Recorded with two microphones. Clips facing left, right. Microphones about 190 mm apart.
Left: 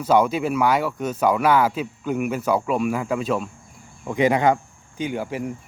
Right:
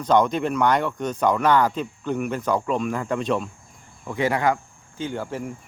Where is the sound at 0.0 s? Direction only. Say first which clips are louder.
Left 1 dB; 5° left (ahead or behind).